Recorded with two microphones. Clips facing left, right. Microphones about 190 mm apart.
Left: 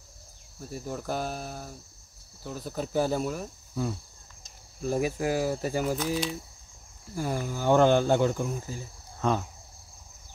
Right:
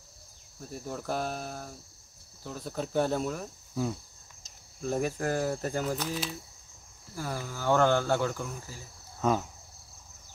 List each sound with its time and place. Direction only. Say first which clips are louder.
0.7 s speech: left 2 dB; 5° left (ahead or behind)
7.2 s speech: left 5 dB; 15° left (ahead or behind)
9.2 s speech: even; 5° right (ahead or behind)